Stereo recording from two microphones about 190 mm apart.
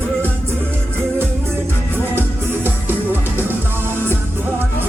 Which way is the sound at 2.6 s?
10° right (ahead or behind).